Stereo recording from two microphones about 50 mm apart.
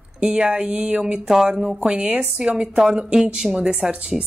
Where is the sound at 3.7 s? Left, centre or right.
Right.